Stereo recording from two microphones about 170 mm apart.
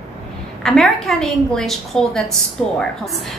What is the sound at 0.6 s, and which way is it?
A woman's voice, centre (ahead or behind).